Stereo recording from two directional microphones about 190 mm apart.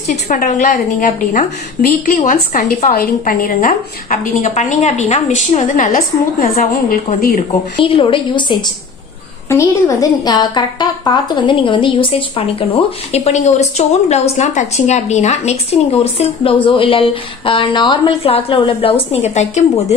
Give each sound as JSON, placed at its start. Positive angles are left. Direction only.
{"t": 0.1, "sound": "a woman's voice", "side_deg": 40}
{"t": 6.6, "sound": "a woman's voice", "side_deg": 35}